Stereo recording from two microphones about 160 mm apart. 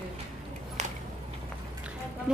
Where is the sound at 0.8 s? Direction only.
45° right (ahead or behind).